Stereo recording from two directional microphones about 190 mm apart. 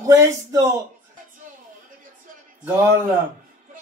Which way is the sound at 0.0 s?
15° right (ahead or behind).